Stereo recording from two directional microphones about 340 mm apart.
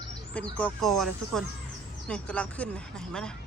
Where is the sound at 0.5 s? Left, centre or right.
Centre.